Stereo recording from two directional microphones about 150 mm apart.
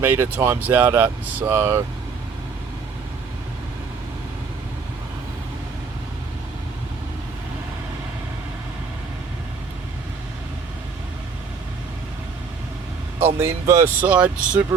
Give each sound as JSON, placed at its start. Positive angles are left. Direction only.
{"t": 0.0, "sound": "speech", "side_deg": -15}
{"t": 13.1, "sound": "speech", "side_deg": -15}